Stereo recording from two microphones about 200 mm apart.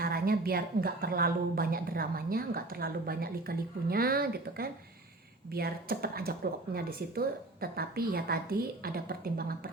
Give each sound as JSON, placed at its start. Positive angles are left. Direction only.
{"t": 0.0, "sound": "a woman's voice", "side_deg": -50}